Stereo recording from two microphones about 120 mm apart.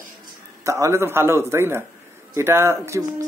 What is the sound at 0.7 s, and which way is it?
Speech, 25° right (ahead or behind).